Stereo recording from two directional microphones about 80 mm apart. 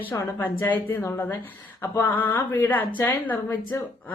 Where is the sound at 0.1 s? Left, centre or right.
Left.